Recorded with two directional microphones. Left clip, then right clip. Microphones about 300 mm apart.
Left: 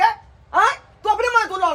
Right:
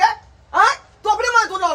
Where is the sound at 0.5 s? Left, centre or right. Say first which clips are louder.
Right 2 dB; centre.